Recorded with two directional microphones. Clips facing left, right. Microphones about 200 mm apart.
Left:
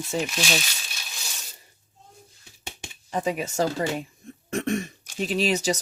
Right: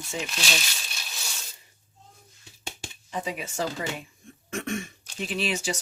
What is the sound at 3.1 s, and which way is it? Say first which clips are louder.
Speech: left 6 dB; 45° left (ahead or behind).